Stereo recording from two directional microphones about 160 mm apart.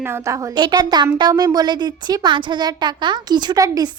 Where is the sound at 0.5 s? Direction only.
25° right (ahead or behind).